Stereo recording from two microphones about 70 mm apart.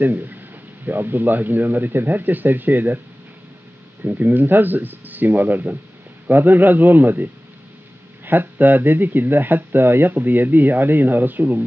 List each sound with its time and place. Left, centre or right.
0.0 s speech: right
4.0 s speech: right
8.3 s speech: right